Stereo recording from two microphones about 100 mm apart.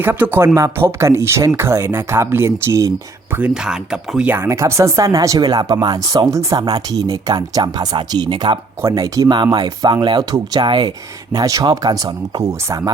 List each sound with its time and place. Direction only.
0.0 s speech: 20° right (ahead or behind)
3.3 s speech: 10° right (ahead or behind)
4.3 s speech: 25° right (ahead or behind); by 8.5 s 50° right (ahead or behind)
8.8 s speech: 30° right (ahead or behind)
9.3 s speech: 50° right (ahead or behind)